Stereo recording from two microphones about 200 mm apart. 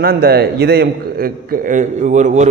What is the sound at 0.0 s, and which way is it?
A man's voice, 50° right (ahead or behind).